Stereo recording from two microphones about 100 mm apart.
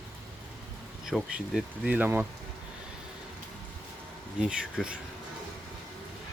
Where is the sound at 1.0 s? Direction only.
5° right (ahead or behind).